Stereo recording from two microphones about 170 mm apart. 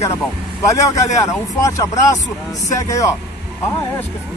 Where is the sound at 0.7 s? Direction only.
20° left (ahead or behind).